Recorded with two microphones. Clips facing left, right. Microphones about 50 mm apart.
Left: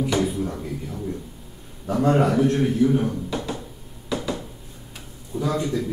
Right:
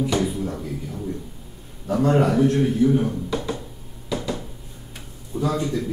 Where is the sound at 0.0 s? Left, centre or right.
Centre.